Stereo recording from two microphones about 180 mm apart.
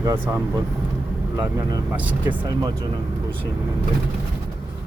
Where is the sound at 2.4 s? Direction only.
20° right (ahead or behind).